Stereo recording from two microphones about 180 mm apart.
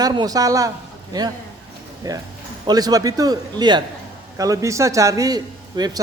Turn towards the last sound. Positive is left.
turn(degrees=-20)  # may be behind; listen again after turning